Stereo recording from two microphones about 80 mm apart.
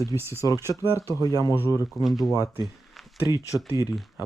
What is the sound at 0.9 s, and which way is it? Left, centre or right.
Speech, left.